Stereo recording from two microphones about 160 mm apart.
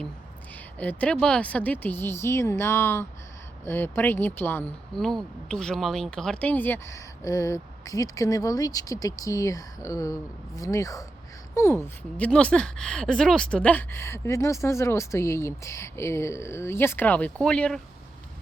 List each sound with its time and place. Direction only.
0.8 s speech: 10° left (ahead or behind)